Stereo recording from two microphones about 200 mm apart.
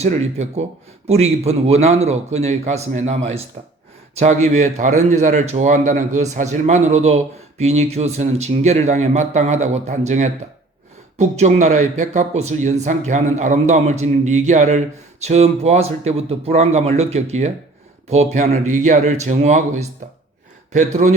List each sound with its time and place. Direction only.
0.0 s speech: 35° right (ahead or behind)